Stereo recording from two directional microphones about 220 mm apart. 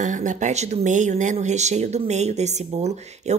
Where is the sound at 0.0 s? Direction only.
35° right (ahead or behind).